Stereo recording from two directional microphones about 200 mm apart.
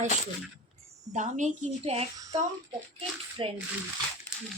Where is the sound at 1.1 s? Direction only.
35° right (ahead or behind).